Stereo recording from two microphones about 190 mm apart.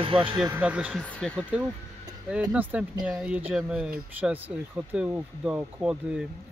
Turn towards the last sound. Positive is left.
turn(degrees=-5)  # may be behind; listen again after turning